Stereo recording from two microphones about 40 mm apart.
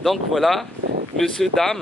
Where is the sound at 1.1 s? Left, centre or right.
Centre.